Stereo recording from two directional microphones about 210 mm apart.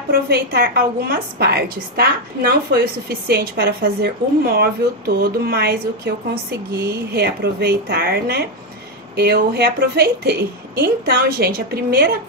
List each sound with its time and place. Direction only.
0.1 s a woman's voice: 50° right (ahead or behind)